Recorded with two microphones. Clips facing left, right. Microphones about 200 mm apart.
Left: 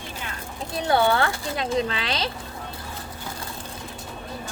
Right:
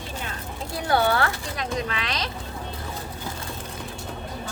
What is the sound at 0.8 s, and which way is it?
Speech, 25° left (ahead or behind).